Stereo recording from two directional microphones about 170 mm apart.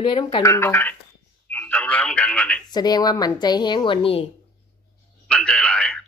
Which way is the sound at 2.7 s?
25° left (ahead or behind).